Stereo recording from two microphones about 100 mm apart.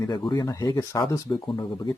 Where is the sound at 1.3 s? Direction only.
45° left (ahead or behind).